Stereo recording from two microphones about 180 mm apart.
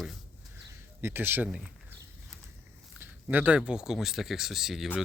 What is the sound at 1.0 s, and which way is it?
Speech, 10° right (ahead or behind).